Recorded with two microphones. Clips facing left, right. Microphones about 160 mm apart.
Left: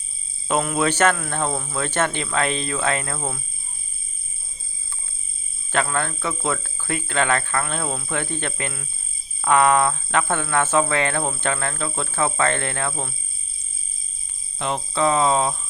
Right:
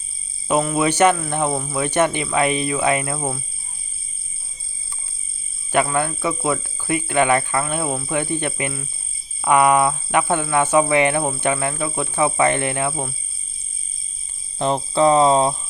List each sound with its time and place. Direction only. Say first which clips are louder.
0.4 s speech: right 3 dB; 5° right (ahead or behind)
5.7 s speech: right 4 dB; 15° right (ahead or behind)
14.6 s cricket: right 5 dB; 35° right (ahead or behind)